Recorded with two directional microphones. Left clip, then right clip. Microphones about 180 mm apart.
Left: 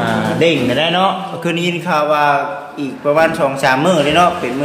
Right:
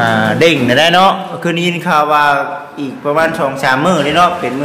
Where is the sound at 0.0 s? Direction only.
20° right (ahead or behind).